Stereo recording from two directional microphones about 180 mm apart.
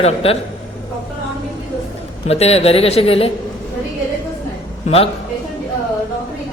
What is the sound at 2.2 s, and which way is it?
A man's voice, 35° left (ahead or behind).